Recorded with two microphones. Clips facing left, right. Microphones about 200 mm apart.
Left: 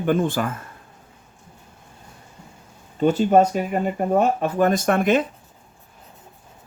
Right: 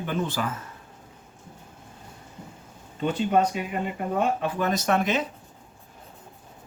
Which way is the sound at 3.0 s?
40° left (ahead or behind).